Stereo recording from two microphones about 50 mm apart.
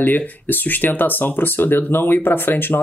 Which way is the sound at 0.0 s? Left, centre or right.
Left.